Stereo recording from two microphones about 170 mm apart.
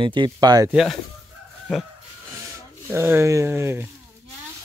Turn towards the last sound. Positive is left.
turn(degrees=-15)  # may be behind; listen again after turning